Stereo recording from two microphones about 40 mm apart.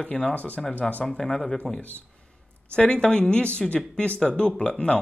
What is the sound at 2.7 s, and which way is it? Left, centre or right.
A woman's voice, left.